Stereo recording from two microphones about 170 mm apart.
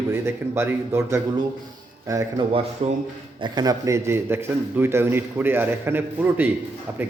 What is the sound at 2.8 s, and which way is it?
Speech, 35° right (ahead or behind).